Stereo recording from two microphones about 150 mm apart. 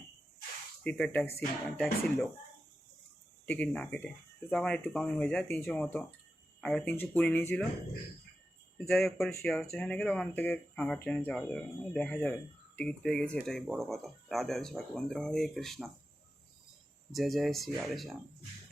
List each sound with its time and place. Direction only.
0.9 s speech: 10° left (ahead or behind)
3.4 s speech: 10° left (ahead or behind)
8.9 s speech: centre (ahead or behind)
17.1 s speech: centre (ahead or behind)